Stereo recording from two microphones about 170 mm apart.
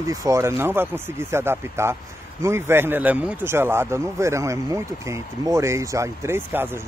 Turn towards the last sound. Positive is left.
turn(degrees=-10)  # may be behind; listen again after turning